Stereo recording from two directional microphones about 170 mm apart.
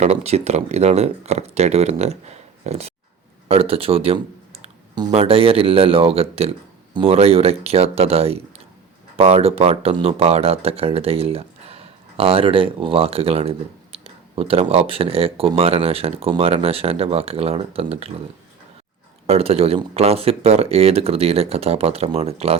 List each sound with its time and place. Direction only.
0.0 s speech: 40° right (ahead or behind)
19.3 s speech: 35° right (ahead or behind)